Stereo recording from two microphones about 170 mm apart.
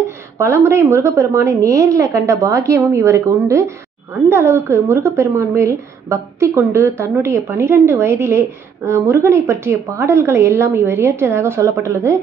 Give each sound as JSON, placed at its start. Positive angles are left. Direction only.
{"t": 0.4, "sound": "a woman's voice", "side_deg": -15}